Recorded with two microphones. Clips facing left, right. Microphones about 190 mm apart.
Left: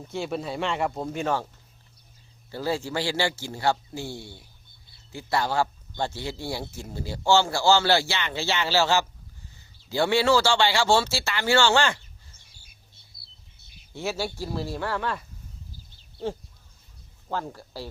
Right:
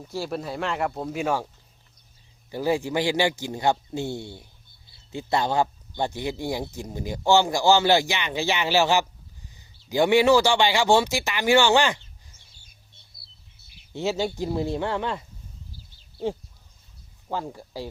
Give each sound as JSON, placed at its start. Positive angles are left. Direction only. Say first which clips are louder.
{"t": 0.1, "sound": "speech", "louder": "even", "side_deg": 0}
{"t": 2.5, "sound": "speech", "louder": "right 4 dB", "side_deg": -15}
{"t": 13.1, "sound": "music", "louder": "even", "side_deg": 0}
{"t": 13.9, "sound": "speech", "louder": "right 4 dB", "side_deg": -20}
{"t": 17.2, "sound": "speech", "louder": "right 1 dB", "side_deg": -10}